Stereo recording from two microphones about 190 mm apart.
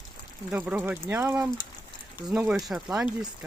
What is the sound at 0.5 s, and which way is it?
Speech, 5° right (ahead or behind).